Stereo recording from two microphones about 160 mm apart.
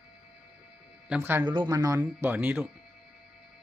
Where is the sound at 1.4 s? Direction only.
30° right (ahead or behind); by 2.7 s 10° right (ahead or behind).